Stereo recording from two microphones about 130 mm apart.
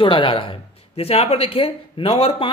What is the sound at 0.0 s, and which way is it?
Speech, 40° left (ahead or behind).